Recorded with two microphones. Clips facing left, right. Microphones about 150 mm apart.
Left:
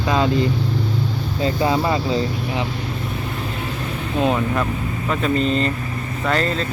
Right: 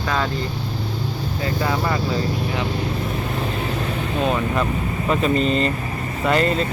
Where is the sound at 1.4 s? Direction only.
20° left (ahead or behind).